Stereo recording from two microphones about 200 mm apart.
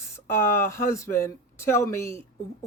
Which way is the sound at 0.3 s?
15° left (ahead or behind).